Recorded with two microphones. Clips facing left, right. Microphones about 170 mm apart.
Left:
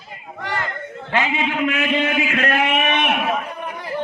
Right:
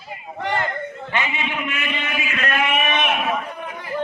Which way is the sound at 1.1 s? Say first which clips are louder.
Left 6 dB; 90° left.